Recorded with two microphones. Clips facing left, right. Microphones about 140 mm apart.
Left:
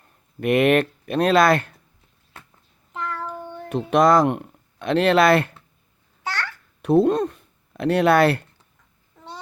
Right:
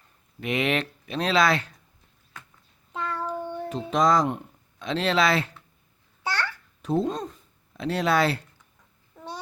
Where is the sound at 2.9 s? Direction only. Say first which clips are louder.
Even; 15° right (ahead or behind).